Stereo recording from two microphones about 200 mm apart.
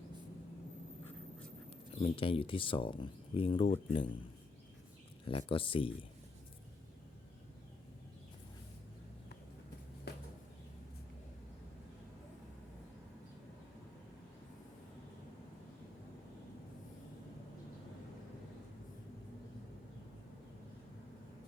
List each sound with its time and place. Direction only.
2.0 s speech: 25° left (ahead or behind)
5.2 s speech: 25° left (ahead or behind)